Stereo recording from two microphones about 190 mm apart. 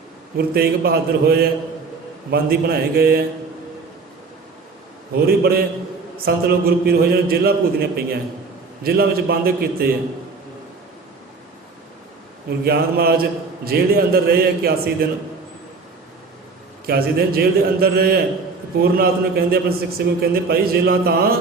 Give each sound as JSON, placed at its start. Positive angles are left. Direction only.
{"t": 0.3, "sound": "a man's voice", "side_deg": -55}
{"t": 5.2, "sound": "a man's voice", "side_deg": -55}
{"t": 12.5, "sound": "a man's voice", "side_deg": -55}
{"t": 16.8, "sound": "a man's voice", "side_deg": -55}